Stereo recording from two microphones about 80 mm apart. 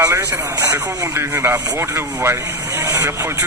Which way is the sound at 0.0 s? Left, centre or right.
Right.